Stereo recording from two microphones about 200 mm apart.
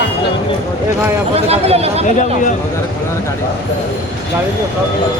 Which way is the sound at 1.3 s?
30° right (ahead or behind).